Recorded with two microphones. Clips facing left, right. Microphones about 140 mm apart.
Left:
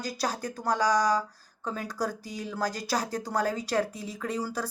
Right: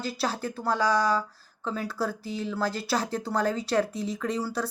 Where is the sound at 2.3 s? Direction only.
15° left (ahead or behind).